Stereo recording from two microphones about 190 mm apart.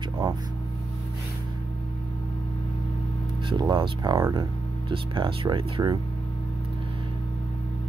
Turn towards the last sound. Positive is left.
turn(degrees=-25)  # may be behind; listen again after turning